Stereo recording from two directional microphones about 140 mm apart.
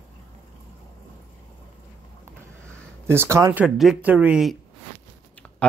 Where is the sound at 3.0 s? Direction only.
15° right (ahead or behind).